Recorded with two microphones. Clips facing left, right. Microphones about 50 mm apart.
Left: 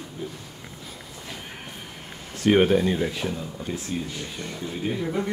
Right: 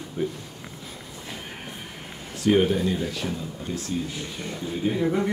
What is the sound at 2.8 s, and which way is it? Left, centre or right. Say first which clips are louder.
Speech: left 2 dB; left.